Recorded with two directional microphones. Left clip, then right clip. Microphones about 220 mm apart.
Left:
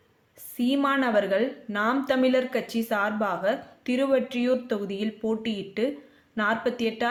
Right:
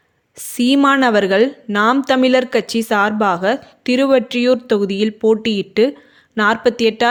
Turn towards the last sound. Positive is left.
turn(degrees=-45)  # may be behind; listen again after turning